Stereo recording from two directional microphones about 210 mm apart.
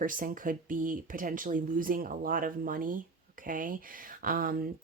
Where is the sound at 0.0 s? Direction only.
40° right (ahead or behind).